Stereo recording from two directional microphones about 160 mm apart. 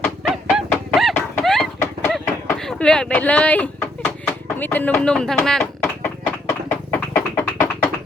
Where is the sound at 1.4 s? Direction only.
Centre (ahead or behind).